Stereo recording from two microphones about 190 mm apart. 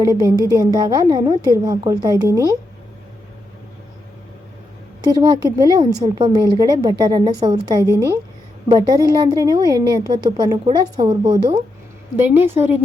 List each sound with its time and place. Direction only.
0.0 s a woman's voice: 20° right (ahead or behind)
5.0 s a woman's voice: 20° right (ahead or behind)